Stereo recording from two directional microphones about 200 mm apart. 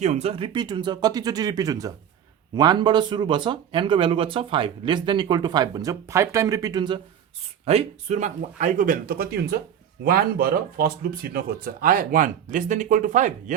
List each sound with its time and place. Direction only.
0.0 s speech: 35° right (ahead or behind)